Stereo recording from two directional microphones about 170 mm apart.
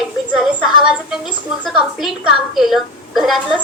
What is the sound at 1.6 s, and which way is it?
A woman's voice, centre (ahead or behind).